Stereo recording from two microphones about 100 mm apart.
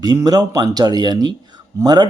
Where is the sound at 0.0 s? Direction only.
40° right (ahead or behind).